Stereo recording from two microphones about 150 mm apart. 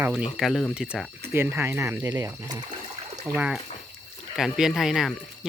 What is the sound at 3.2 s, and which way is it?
Speech, 10° right (ahead or behind).